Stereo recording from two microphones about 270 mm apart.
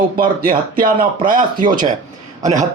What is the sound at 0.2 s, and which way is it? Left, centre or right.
Speech, right.